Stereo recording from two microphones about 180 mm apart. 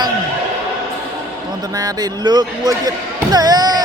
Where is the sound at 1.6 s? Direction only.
20° right (ahead or behind).